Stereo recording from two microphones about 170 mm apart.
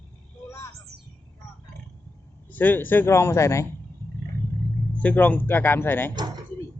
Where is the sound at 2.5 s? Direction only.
10° left (ahead or behind).